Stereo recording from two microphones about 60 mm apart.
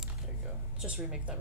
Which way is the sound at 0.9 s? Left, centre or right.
Centre.